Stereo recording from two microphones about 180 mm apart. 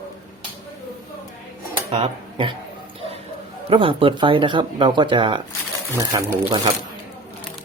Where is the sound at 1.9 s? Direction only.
30° right (ahead or behind).